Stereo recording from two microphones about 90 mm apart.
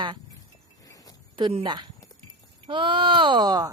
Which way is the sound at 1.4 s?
60° right (ahead or behind).